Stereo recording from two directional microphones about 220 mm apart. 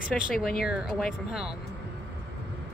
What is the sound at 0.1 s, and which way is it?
Speech, centre (ahead or behind).